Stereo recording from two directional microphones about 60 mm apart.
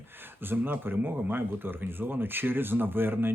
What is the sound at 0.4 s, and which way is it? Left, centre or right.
Speech, right.